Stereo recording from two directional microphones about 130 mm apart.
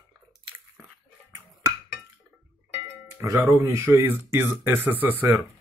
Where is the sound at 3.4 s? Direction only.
20° right (ahead or behind).